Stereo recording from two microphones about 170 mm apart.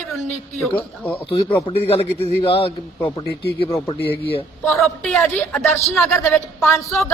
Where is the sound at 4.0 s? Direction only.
75° left (ahead or behind).